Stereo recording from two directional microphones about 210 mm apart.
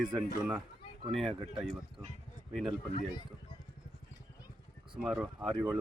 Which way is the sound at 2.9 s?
30° left (ahead or behind).